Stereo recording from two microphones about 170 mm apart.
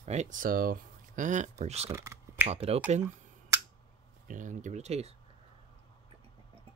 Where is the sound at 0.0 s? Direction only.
40° right (ahead or behind).